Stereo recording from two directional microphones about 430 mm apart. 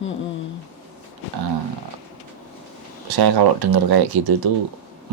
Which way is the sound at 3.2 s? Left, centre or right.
Right.